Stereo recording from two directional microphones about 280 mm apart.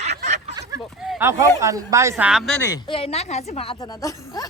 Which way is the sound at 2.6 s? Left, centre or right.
Centre.